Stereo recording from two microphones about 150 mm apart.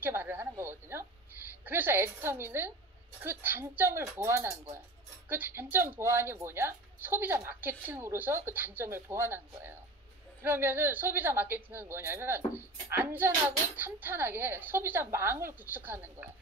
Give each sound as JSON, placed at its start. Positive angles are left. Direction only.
{"t": 0.0, "sound": "a woman's voice", "side_deg": -15}